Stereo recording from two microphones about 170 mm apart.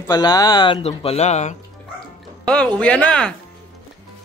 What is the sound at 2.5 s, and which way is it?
Speech, 5° left (ahead or behind).